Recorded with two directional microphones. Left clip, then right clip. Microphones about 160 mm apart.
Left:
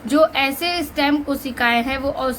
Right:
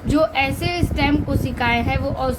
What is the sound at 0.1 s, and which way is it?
A woman's voice, 30° left (ahead or behind).